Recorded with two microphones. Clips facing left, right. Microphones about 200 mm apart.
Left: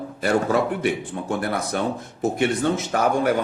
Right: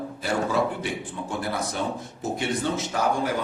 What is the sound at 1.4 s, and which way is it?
Speech, 60° left (ahead or behind).